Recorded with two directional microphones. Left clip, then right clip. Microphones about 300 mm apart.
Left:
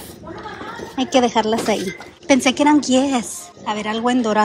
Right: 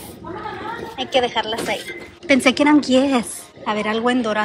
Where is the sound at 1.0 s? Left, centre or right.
Left.